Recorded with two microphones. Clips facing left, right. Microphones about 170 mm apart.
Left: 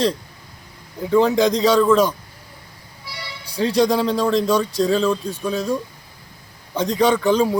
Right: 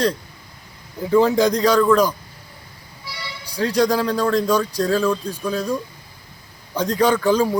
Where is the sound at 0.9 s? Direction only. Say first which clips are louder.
Even; centre (ahead or behind).